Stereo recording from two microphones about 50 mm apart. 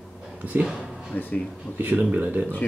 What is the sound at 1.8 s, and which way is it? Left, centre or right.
Speech, right.